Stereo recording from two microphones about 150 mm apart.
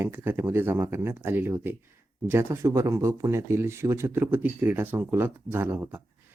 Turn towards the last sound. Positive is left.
turn(degrees=-15)  # may be behind; listen again after turning